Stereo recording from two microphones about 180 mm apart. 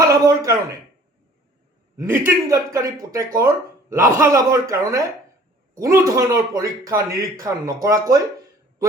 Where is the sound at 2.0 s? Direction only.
15° right (ahead or behind).